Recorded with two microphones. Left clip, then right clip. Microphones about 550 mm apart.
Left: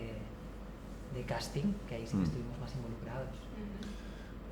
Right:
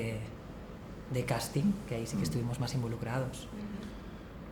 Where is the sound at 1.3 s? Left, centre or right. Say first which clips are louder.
Right 2 dB; right.